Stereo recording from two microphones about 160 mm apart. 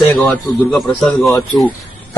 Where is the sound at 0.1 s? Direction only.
10° left (ahead or behind).